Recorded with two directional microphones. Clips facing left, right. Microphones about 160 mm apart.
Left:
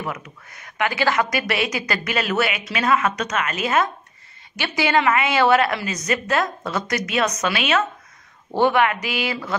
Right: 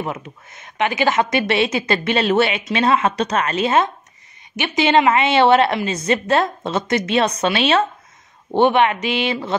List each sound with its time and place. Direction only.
0.0 s speech: 25° right (ahead or behind)